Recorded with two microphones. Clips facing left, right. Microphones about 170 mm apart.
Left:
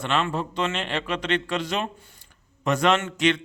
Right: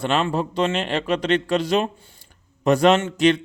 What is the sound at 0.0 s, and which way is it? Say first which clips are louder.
A man's voice: right 4 dB; 30° right (ahead or behind).